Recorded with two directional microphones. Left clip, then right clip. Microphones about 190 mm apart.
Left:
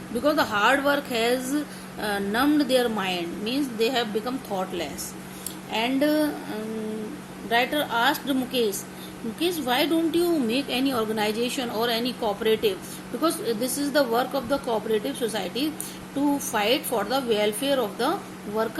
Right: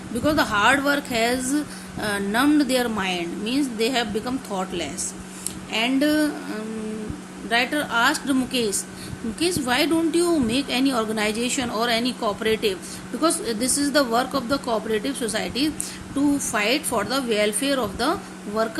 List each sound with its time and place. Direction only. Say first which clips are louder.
0.2 s speech: right 2 dB; 35° right (ahead or behind)